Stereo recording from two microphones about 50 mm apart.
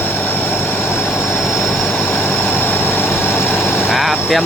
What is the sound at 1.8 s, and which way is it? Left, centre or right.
Vehicle, left.